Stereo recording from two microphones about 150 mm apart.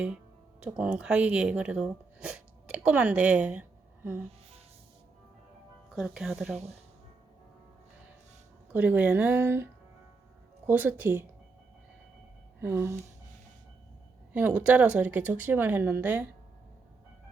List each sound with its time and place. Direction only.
0.6 s speech: 10° right (ahead or behind)
5.9 s speech: 5° right (ahead or behind)
8.7 s a woman's voice: 10° right (ahead or behind)
10.7 s a woman's voice: 15° right (ahead or behind)
12.5 s speech: 15° right (ahead or behind)
14.3 s a woman's voice: 10° right (ahead or behind)